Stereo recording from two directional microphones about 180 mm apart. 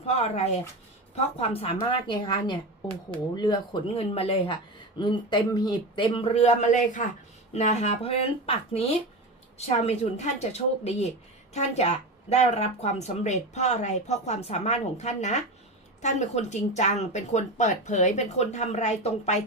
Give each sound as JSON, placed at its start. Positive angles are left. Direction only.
{"t": 0.0, "sound": "speech", "side_deg": 35}